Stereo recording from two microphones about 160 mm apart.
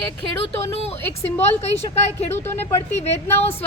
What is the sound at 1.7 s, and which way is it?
Speech, 45° left (ahead or behind).